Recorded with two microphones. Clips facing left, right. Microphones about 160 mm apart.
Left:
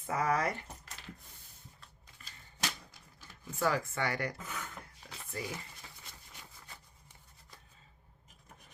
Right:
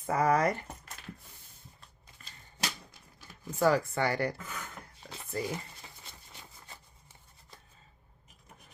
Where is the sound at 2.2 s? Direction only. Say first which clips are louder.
Right 1 dB; 40° right (ahead or behind).